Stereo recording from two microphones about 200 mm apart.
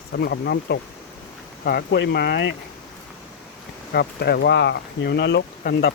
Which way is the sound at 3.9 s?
55° left (ahead or behind).